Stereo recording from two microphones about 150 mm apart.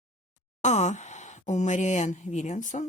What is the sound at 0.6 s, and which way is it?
Speech, 50° left (ahead or behind).